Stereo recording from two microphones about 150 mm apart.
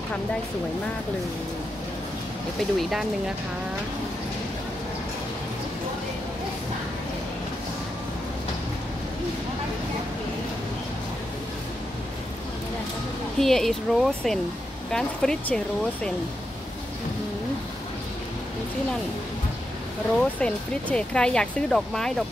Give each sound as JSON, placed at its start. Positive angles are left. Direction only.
{"t": 2.8, "sound": "speech", "side_deg": 0}
{"t": 13.4, "sound": "speech", "side_deg": 0}
{"t": 20.2, "sound": "speech", "side_deg": 5}